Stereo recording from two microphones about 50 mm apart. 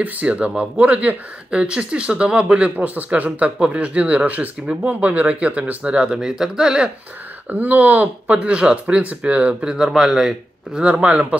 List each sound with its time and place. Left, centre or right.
0.0 s speech: right
1.5 s speech: right
3.5 s speech: centre
6.0 s speech: centre
7.4 s speech: right
8.4 s speech: centre
10.9 s speech: right